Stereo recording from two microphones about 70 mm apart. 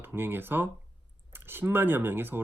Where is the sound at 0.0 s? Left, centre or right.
Right.